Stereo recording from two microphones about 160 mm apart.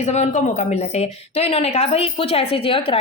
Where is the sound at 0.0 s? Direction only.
45° left (ahead or behind).